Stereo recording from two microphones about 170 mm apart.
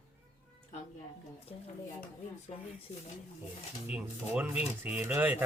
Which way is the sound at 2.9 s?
40° left (ahead or behind).